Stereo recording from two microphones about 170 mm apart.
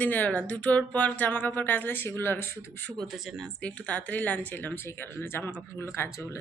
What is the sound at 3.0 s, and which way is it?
A woman's voice, centre (ahead or behind).